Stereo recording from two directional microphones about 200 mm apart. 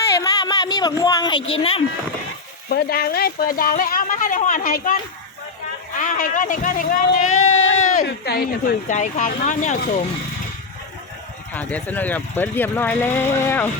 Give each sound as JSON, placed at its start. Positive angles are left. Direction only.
{"t": 0.2, "sound": "a sound", "side_deg": 20}
{"t": 1.4, "sound": "speech", "side_deg": 80}
{"t": 2.6, "sound": "speech", "side_deg": 50}
{"t": 6.0, "sound": "speech", "side_deg": 40}
{"t": 7.8, "sound": "a sound", "side_deg": 40}
{"t": 8.0, "sound": "speech", "side_deg": 50}
{"t": 11.5, "sound": "speech", "side_deg": 10}